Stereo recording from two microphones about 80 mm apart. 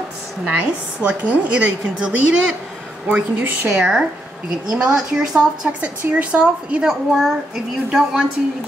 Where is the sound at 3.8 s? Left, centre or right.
Centre.